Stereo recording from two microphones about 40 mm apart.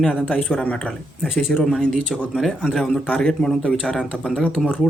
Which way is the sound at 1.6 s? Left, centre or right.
Centre.